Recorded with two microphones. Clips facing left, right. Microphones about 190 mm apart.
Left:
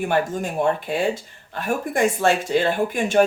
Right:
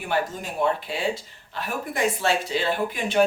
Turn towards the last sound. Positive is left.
turn(degrees=50)  # may be behind; listen again after turning